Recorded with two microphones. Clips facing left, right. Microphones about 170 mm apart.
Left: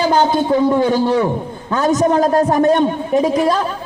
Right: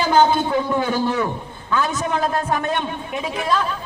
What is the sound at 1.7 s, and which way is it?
A man's voice, 40° left (ahead or behind).